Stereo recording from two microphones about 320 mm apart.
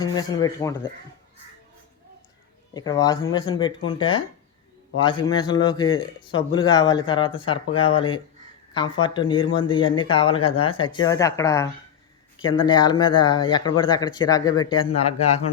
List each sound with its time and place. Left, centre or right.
0.0 s speech: centre
2.7 s speech: centre